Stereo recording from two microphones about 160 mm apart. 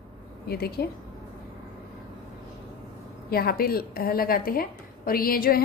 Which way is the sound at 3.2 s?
70° left (ahead or behind).